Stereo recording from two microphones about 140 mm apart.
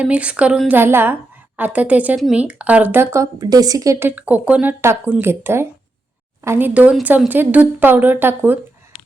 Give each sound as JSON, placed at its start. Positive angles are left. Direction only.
{"t": 0.0, "sound": "speech", "side_deg": -10}
{"t": 4.1, "sound": "speech", "side_deg": -10}